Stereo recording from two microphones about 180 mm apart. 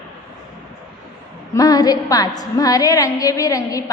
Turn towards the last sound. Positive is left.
turn(degrees=20)  # may be behind; listen again after turning